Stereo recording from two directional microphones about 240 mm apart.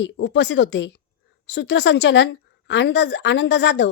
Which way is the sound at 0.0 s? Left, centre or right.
Left.